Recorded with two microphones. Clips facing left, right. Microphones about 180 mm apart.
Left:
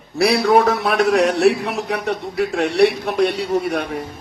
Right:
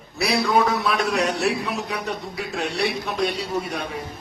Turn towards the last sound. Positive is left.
turn(degrees=70)  # may be behind; listen again after turning